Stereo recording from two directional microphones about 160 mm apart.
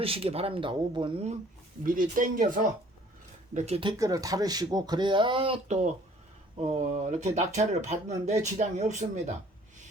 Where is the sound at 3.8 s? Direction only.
25° right (ahead or behind).